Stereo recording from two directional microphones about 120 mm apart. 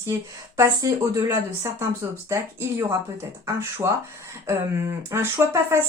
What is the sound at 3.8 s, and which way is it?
Speech, 20° right (ahead or behind).